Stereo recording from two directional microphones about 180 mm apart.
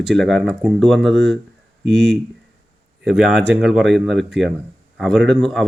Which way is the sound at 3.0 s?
5° right (ahead or behind).